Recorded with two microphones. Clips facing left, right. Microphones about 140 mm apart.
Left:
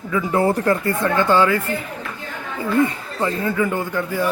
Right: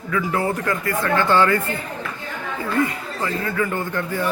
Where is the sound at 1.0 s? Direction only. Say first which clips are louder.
Even; 15° left (ahead or behind).